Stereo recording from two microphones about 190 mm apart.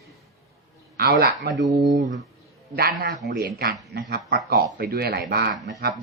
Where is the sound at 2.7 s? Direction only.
50° right (ahead or behind).